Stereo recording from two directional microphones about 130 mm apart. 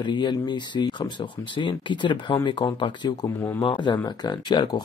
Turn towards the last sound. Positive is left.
turn(degrees=35)  # may be behind; listen again after turning